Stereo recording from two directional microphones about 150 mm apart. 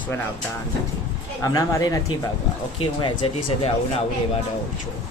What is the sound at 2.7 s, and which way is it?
Speech, 35° left (ahead or behind).